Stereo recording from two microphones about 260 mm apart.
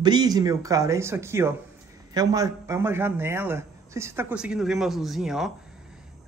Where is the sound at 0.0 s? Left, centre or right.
Centre.